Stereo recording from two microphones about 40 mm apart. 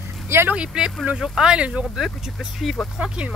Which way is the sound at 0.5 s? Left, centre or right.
Centre.